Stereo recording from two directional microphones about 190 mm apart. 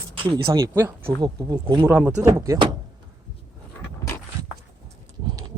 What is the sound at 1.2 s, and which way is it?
Speech, 25° right (ahead or behind).